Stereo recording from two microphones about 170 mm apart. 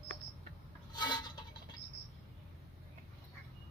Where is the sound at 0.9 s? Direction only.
25° left (ahead or behind).